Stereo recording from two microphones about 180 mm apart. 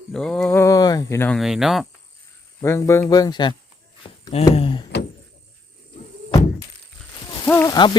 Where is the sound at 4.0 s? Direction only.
25° left (ahead or behind).